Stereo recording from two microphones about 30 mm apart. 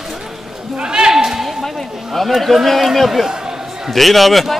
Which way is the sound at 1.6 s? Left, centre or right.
Centre.